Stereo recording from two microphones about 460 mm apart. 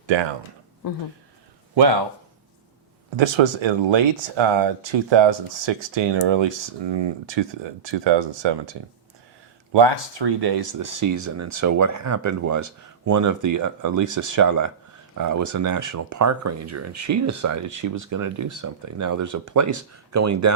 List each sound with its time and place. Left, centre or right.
3.2 s speech: right
9.7 s speech: right